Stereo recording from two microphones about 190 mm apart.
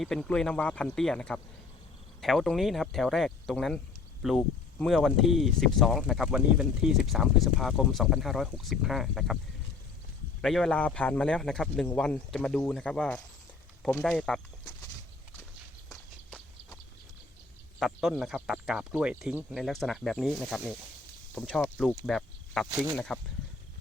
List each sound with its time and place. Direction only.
0.0 s speech: centre (ahead or behind)
10.4 s speech: centre (ahead or behind)
16.3 s horse: 5° left (ahead or behind)
17.7 s speech: centre (ahead or behind)